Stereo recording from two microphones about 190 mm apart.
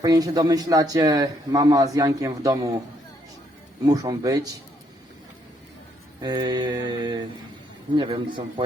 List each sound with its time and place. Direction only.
0.0 s speech: 20° right (ahead or behind)
3.8 s speech: 20° right (ahead or behind)
6.1 s speech: 20° right (ahead or behind)